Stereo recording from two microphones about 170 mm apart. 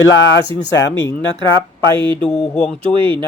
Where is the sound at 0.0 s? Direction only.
90° left.